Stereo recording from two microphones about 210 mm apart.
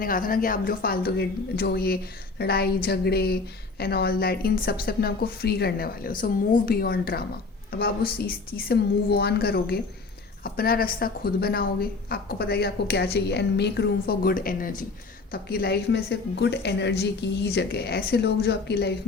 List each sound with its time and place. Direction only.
0.0 s a woman's voice: 40° left (ahead or behind)